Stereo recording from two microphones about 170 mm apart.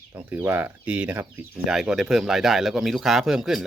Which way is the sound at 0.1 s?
10° right (ahead or behind).